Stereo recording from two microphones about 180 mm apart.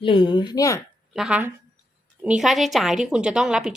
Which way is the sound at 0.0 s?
30° left (ahead or behind).